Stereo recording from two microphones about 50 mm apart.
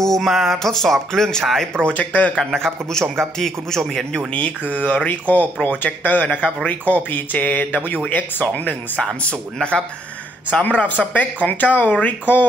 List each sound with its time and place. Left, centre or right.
0.0 s speech: centre
2.0 s speech: left
2.3 s a man's voice: centre
4.3 s speech: left